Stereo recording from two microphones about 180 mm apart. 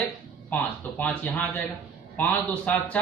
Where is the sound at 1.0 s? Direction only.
10° left (ahead or behind).